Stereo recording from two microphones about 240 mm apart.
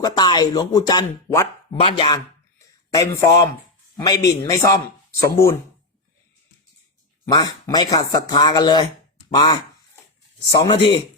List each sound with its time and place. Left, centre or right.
0.0 s speech: centre
1.7 s chopping: left
2.9 s speech: centre
7.3 s speech: centre
9.3 s a sound: centre
10.6 s chopping: left